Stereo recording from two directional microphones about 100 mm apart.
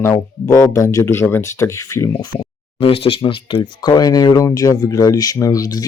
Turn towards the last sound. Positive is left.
turn(degrees=40)  # may be behind; listen again after turning